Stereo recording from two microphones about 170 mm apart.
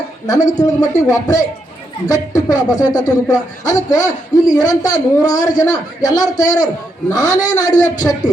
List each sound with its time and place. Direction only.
0.3 s speech: 20° left (ahead or behind)